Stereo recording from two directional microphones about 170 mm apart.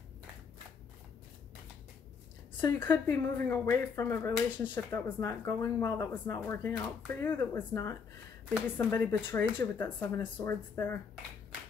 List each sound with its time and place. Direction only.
2.6 s speech: 10° left (ahead or behind)